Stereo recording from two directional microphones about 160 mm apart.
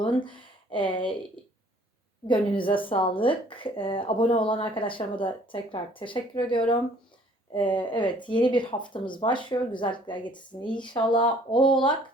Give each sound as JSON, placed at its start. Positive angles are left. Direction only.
{"t": 0.0, "sound": "a sound", "side_deg": 30}
{"t": 0.9, "sound": "speech", "side_deg": 30}
{"t": 2.2, "sound": "speech", "side_deg": 30}